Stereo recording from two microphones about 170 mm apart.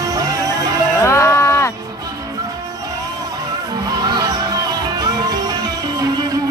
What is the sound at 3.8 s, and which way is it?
Music, 25° right (ahead or behind).